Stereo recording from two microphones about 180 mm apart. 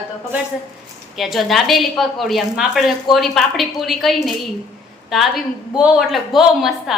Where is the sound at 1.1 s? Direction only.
Centre (ahead or behind).